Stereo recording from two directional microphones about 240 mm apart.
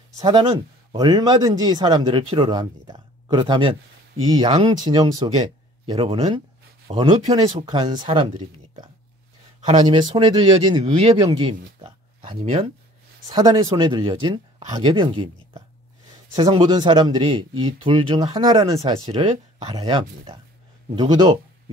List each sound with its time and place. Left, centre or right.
0.2 s speech: centre